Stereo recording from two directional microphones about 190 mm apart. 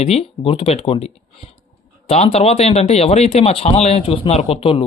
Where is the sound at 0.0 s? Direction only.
35° left (ahead or behind).